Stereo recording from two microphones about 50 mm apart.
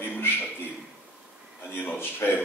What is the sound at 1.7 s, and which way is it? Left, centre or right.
Speech, left.